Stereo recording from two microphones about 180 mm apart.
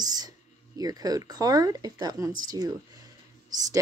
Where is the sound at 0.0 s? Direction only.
20° right (ahead or behind).